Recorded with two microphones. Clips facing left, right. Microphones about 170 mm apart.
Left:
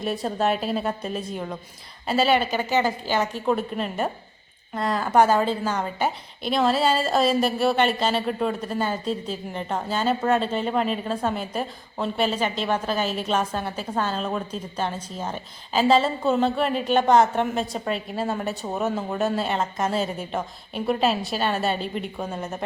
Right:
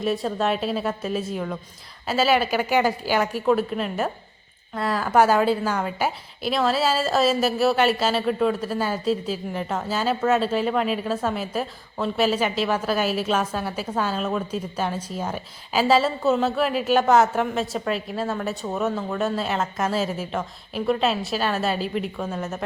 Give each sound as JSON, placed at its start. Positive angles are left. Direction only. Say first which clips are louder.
{"t": 0.0, "sound": "a woman's voice", "louder": "right 1 dB", "side_deg": 0}
{"t": 18.6, "sound": "speech", "louder": "right 2 dB", "side_deg": 20}
{"t": 19.2, "sound": "a woman's voice", "louder": "left 1 dB", "side_deg": 0}
{"t": 22.4, "sound": "speech", "louder": "right 2 dB", "side_deg": 15}